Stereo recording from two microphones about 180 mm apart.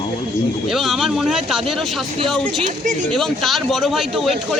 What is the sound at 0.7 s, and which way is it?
A man's voice, centre (ahead or behind).